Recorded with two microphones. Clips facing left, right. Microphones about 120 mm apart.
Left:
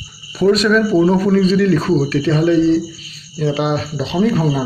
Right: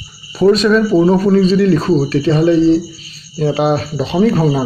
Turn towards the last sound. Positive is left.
turn(degrees=-45)  # may be behind; listen again after turning